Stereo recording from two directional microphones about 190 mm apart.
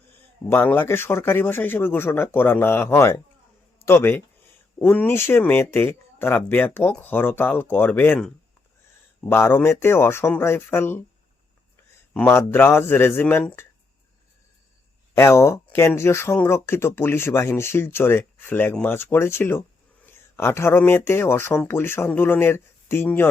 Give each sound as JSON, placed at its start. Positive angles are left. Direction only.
{"t": 0.5, "sound": "a man's voice", "side_deg": 10}
{"t": 9.3, "sound": "speech", "side_deg": 10}
{"t": 12.1, "sound": "speech", "side_deg": 10}
{"t": 15.1, "sound": "speech", "side_deg": 15}